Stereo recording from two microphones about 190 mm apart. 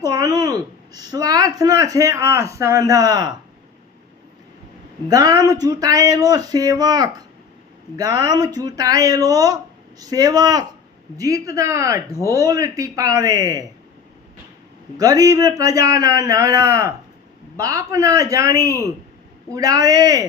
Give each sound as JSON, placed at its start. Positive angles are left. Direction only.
{"t": 0.0, "sound": "a woman's voice", "side_deg": -20}
{"t": 5.0, "sound": "a woman's voice", "side_deg": -20}
{"t": 14.9, "sound": "a woman's voice", "side_deg": -20}